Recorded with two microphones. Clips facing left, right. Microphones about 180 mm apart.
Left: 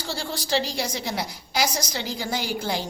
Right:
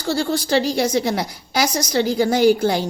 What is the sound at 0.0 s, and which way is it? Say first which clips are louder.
A woman's voice: right 10 dB; 50° right (ahead or behind).